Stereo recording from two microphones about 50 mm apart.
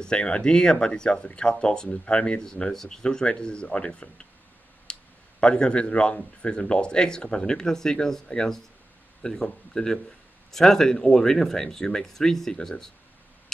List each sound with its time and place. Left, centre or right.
0.0 s speech: centre
2.7 s speech: centre; by 4.3 s left
4.9 s a sound: centre
5.4 s speech: centre